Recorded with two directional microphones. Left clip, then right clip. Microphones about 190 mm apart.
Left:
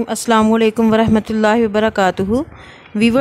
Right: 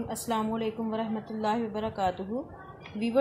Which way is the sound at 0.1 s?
45° left (ahead or behind).